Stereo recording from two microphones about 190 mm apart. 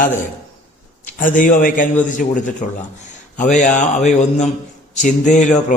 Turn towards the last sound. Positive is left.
turn(degrees=40)  # may be behind; listen again after turning